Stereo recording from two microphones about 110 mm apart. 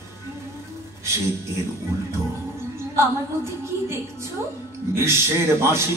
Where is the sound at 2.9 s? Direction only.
25° right (ahead or behind).